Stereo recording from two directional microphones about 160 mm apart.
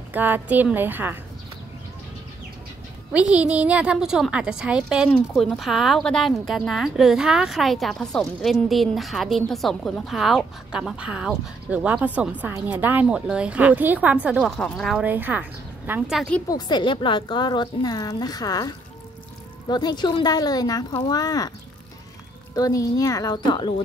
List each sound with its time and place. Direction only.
0.1 s a woman's voice: 10° right (ahead or behind)
3.1 s a woman's voice: 10° right (ahead or behind)
15.0 s a woman's voice: 10° right (ahead or behind)
16.1 s a woman's voice: 5° left (ahead or behind)
16.4 s speech: 25° left (ahead or behind)
22.6 s speech: 20° left (ahead or behind)